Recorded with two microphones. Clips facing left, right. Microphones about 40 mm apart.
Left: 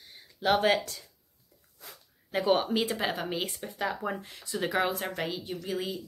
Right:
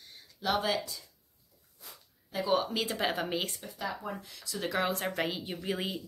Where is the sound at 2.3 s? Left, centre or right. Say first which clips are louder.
Left 3 dB; left.